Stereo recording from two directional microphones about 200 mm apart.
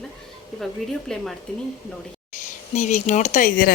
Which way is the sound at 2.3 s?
40° left (ahead or behind).